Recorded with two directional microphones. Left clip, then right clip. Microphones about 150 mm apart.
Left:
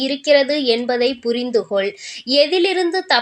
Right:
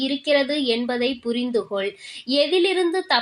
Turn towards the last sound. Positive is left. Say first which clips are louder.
# left 3 dB
turn(degrees=25)  # may be behind; listen again after turning